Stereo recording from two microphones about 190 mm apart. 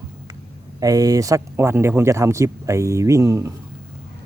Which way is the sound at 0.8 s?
20° right (ahead or behind).